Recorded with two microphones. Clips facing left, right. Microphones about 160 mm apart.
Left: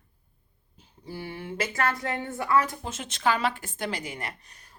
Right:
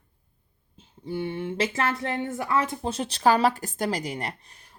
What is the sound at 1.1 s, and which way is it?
Speech, 25° right (ahead or behind).